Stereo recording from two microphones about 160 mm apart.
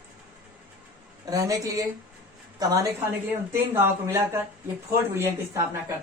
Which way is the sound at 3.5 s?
15° right (ahead or behind).